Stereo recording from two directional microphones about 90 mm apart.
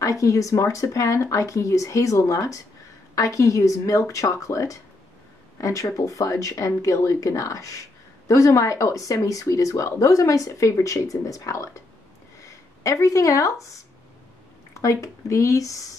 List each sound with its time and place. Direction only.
0.0 s speech: 35° left (ahead or behind)
14.7 s speech: 35° left (ahead or behind)